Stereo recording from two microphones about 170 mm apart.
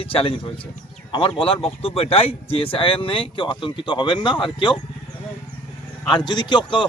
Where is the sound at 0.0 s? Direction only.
35° left (ahead or behind).